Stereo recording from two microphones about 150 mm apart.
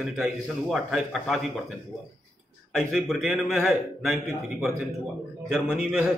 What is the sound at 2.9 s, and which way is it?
A man's voice, centre (ahead or behind).